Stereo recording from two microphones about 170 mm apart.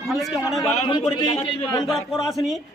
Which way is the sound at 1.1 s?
25° left (ahead or behind).